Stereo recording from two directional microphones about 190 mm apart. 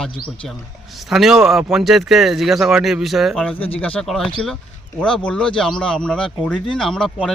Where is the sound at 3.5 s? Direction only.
30° left (ahead or behind).